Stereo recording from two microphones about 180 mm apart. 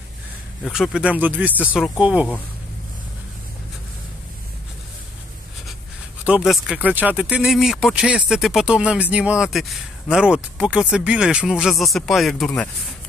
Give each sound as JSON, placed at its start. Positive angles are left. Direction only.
{"t": 0.7, "sound": "speech", "side_deg": 0}
{"t": 6.2, "sound": "speech", "side_deg": -5}